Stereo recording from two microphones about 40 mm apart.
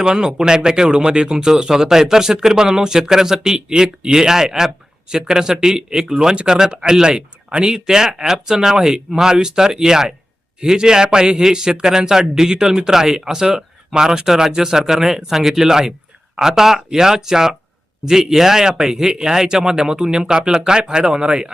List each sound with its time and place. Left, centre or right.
0.0 s speech: right